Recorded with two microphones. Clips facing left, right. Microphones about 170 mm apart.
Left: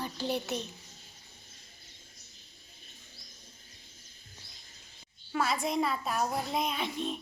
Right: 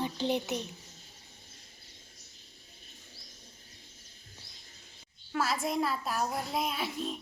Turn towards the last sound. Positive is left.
turn(degrees=0)  # may be behind; listen again after turning